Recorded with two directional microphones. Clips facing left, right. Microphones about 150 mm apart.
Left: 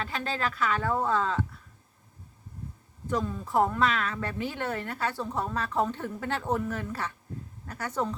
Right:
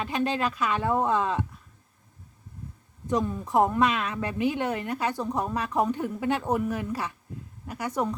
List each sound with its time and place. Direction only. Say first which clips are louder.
0.0 s a woman's voice: right 5 dB; 20° right (ahead or behind)
3.1 s a woman's voice: right 3 dB; 20° right (ahead or behind)